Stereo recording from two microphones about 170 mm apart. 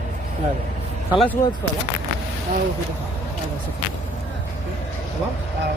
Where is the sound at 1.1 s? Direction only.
10° left (ahead or behind).